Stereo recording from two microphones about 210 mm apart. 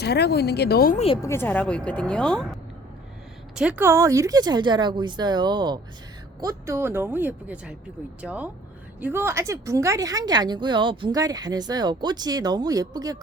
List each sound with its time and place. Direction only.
0.0 s speech: 50° left (ahead or behind)
0.9 s speech: 25° left (ahead or behind)
1.2 s a woman's voice: 10° left (ahead or behind); by 13.1 s 15° right (ahead or behind)